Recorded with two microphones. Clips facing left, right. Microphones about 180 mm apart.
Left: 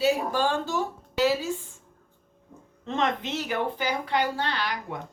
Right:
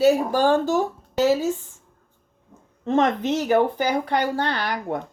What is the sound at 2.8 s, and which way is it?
A woman's voice, 45° right (ahead or behind).